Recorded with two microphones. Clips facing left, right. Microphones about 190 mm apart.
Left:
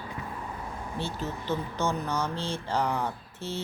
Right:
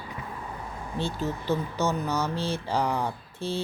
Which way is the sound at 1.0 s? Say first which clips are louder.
Right 5 dB; 10° right (ahead or behind).